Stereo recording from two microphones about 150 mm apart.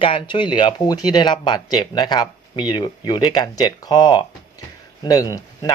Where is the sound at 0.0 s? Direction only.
35° left (ahead or behind).